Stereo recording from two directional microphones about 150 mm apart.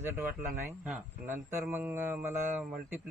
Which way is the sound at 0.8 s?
10° right (ahead or behind).